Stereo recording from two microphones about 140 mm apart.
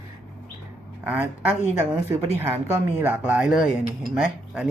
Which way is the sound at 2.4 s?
15° right (ahead or behind).